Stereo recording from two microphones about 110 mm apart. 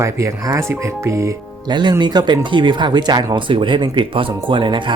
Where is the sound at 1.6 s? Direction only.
40° right (ahead or behind).